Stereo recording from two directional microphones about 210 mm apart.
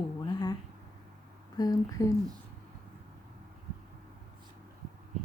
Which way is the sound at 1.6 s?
20° left (ahead or behind).